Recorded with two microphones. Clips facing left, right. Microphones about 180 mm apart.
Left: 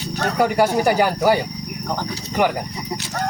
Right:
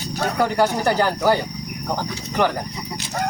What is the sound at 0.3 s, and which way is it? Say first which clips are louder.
Speech: left 3 dB; 10° left (ahead or behind).